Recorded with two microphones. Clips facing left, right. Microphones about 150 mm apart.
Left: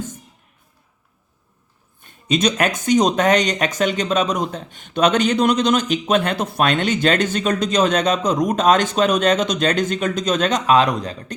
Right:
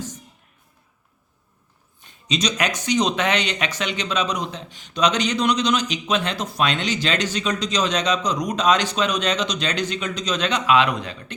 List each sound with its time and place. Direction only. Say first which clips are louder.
2.0 s speech: left 6 dB; 50° left (ahead or behind)